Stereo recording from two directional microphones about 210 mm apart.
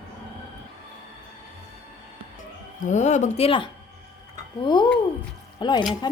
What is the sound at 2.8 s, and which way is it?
Speech, 35° left (ahead or behind).